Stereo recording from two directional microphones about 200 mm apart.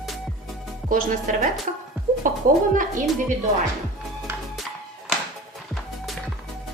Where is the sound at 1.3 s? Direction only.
40° right (ahead or behind).